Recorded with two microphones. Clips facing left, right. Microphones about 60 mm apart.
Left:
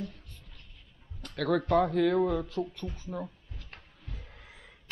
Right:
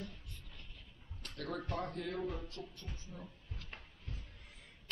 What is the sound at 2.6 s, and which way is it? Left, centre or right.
Speech, left.